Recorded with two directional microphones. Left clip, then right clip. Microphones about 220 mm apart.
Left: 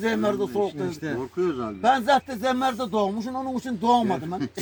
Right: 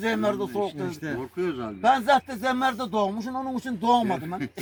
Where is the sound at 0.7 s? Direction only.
10° right (ahead or behind).